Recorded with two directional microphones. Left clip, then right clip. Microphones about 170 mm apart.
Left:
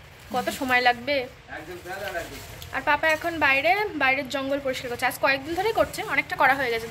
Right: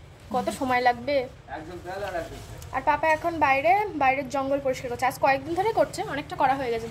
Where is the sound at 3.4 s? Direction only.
5° left (ahead or behind).